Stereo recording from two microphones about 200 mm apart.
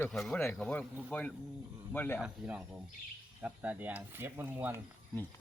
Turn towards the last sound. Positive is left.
turn(degrees=-10)  # may be behind; listen again after turning